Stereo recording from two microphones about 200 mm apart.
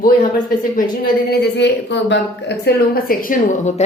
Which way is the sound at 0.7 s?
50° left (ahead or behind).